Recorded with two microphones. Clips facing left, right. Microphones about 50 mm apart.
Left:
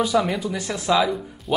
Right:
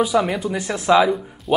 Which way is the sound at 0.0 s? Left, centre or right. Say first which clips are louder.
Right 2 dB; centre.